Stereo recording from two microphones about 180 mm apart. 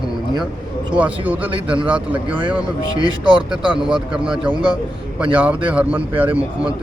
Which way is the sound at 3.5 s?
5° right (ahead or behind).